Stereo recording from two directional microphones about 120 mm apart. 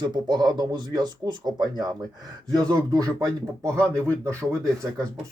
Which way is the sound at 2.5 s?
30° right (ahead or behind).